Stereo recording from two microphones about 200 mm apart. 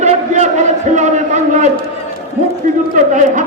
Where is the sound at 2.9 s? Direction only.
40° right (ahead or behind).